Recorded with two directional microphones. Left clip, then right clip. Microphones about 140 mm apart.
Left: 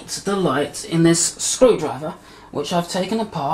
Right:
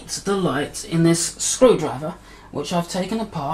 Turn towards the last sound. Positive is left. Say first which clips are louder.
# left 3 dB
turn(degrees=0)  # may be behind; listen again after turning